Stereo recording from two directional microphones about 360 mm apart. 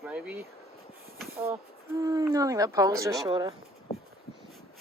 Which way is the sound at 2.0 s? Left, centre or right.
Centre.